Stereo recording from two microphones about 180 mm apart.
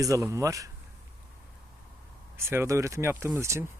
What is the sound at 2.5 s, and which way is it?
Speech, 15° right (ahead or behind).